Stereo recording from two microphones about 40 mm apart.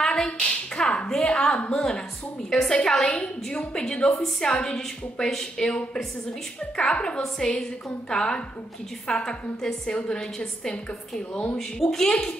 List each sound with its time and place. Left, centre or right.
0.0 s a sound: centre
0.7 s a woman's voice: centre
11.5 s a woman's voice: centre